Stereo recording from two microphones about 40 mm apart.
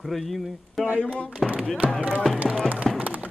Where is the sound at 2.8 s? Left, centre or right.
Centre.